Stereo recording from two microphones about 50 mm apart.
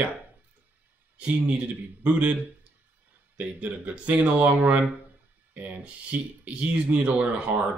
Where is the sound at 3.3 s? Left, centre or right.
Right.